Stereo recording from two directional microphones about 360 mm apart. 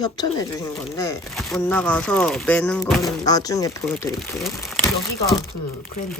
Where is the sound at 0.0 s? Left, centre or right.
Centre.